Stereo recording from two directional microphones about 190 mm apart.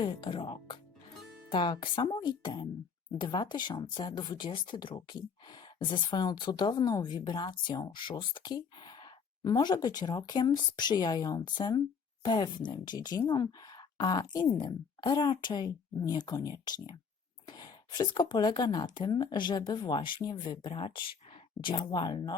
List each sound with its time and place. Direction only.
0.0 s speech: 25° left (ahead or behind)